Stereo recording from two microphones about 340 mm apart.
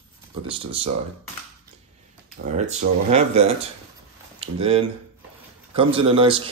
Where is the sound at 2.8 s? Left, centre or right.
Right.